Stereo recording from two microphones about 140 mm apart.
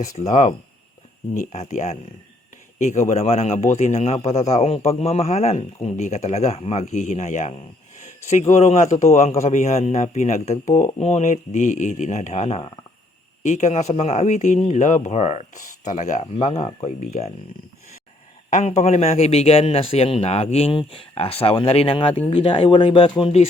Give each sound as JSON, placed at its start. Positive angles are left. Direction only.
{"t": 0.0, "sound": "a man's voice", "side_deg": 60}
{"t": 13.4, "sound": "a man's voice", "side_deg": 60}
{"t": 18.5, "sound": "a man's voice", "side_deg": 55}